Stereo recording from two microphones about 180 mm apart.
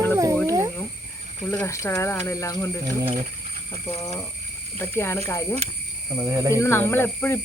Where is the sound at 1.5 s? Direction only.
15° left (ahead or behind).